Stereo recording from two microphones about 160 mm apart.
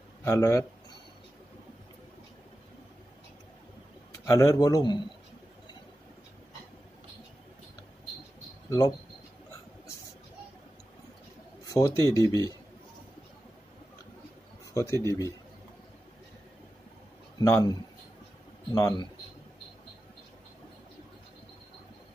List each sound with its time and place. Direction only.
0.2 s speech: 15° left (ahead or behind)
4.3 s a man's voice: 20° left (ahead or behind)
8.6 s speech: 20° left (ahead or behind)
11.6 s speech: 20° left (ahead or behind)
14.7 s a man's voice: 20° left (ahead or behind)
17.4 s a man's voice: 20° left (ahead or behind)